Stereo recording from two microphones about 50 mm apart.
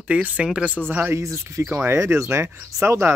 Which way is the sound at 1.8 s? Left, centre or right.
Right.